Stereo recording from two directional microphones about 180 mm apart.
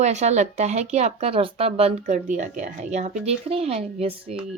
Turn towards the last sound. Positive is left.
turn(degrees=-35)  # may be behind; listen again after turning